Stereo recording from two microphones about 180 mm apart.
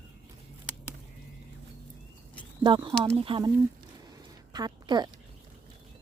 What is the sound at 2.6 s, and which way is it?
Speech, 25° right (ahead or behind).